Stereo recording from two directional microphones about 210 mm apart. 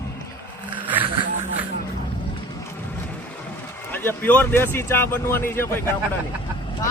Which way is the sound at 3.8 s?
10° left (ahead or behind).